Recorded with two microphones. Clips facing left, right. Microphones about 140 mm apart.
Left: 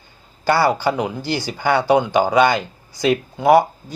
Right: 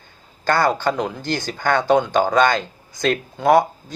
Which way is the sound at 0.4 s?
10° left (ahead or behind).